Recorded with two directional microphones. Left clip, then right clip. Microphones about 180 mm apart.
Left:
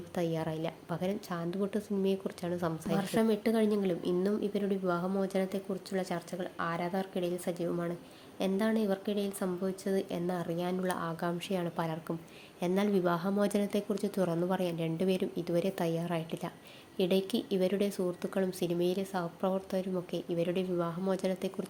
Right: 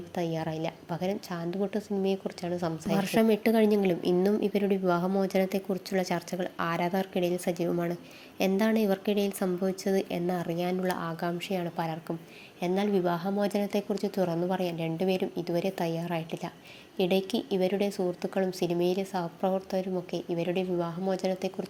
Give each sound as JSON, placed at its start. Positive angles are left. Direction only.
{"t": 0.1, "sound": "a woman's voice", "side_deg": 5}
{"t": 3.0, "sound": "a woman's voice", "side_deg": -15}